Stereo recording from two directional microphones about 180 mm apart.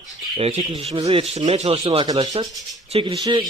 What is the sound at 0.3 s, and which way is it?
Speech, 35° right (ahead or behind).